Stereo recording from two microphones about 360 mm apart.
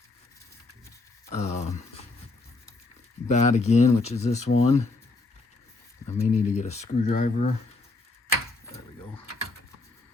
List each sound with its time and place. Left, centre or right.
1.3 s speech: centre
3.2 s speech: centre
6.1 s speech: centre